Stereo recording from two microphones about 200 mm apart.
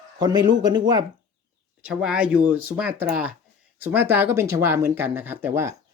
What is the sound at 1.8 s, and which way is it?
Speech, 5° right (ahead or behind).